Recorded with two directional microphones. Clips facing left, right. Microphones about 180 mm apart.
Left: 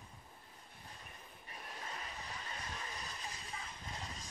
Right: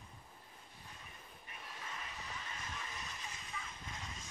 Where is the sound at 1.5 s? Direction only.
35° left (ahead or behind).